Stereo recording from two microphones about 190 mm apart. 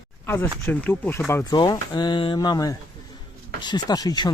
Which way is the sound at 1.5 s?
20° left (ahead or behind).